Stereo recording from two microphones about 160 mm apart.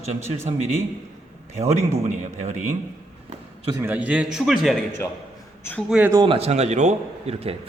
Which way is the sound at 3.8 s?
10° right (ahead or behind).